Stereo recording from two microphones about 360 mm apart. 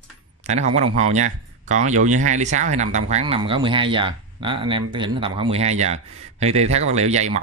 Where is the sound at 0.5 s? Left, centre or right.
Centre.